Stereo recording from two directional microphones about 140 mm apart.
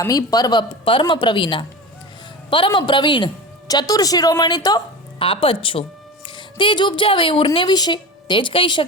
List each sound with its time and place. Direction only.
0.0 s a woman's voice: 25° left (ahead or behind)
5.2 s a woman's voice: 40° left (ahead or behind)